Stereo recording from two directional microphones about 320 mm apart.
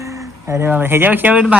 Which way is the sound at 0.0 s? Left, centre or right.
Centre.